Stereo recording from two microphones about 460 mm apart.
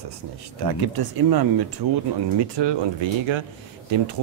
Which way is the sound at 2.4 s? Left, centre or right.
Right.